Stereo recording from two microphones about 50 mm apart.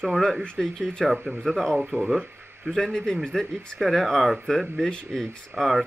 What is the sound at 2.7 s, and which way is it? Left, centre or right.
A man's voice, centre.